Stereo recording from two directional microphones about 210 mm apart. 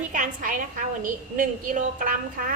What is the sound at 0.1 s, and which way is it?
A woman's voice, 40° right (ahead or behind).